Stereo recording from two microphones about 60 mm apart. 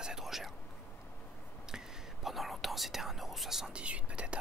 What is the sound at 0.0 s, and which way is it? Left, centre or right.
Whispering, centre.